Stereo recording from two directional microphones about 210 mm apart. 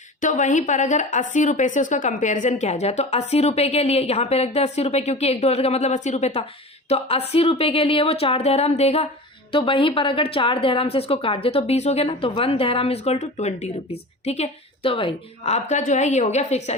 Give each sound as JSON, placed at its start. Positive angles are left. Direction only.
{"t": 0.2, "sound": "a woman's voice", "side_deg": 35}